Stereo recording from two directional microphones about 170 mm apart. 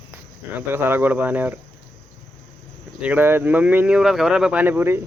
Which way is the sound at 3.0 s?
10° right (ahead or behind).